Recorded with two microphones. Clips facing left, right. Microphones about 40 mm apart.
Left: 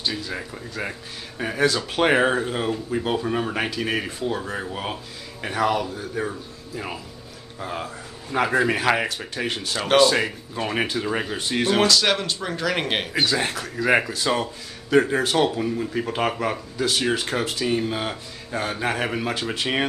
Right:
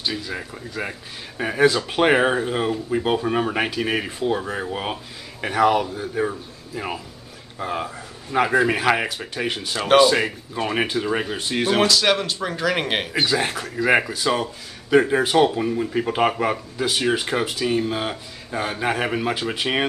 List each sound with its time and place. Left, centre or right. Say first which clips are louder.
0.0 s speech: right 1 dB; centre